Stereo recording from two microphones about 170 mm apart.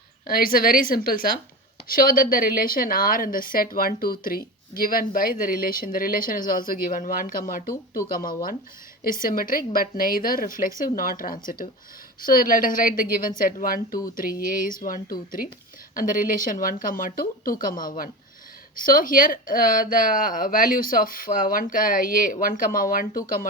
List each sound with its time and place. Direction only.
0.3 s a woman's voice: 55° left (ahead or behind)